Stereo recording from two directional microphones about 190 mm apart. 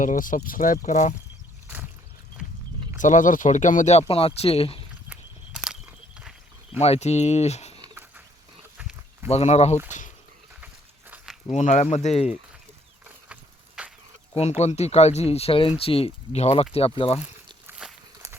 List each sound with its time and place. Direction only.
0.0 s speech: 45° left (ahead or behind)
1.6 s a sound: 10° right (ahead or behind)
3.0 s speech: 40° left (ahead or behind)
5.0 s walk: 5° right (ahead or behind)
6.7 s speech: 35° left (ahead or behind)
7.8 s a sound: 15° right (ahead or behind)
8.8 s livestock: 5° right (ahead or behind)
9.3 s speech: 35° left (ahead or behind)
11.5 s speech: 40° left (ahead or behind)
13.2 s a sound: 5° right (ahead or behind)
14.6 s speech: 35° left (ahead or behind)
17.2 s walk: 5° right (ahead or behind)